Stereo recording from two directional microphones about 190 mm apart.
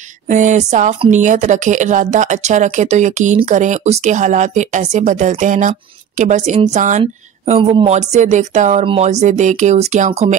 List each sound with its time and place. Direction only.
0.3 s speech: 40° right (ahead or behind)